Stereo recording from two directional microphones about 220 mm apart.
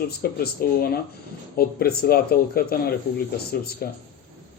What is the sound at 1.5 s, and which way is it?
Speech, 45° left (ahead or behind).